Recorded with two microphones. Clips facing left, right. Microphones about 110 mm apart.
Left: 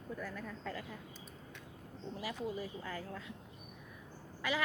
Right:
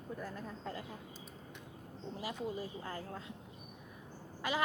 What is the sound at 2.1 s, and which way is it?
Speech, 30° right (ahead or behind).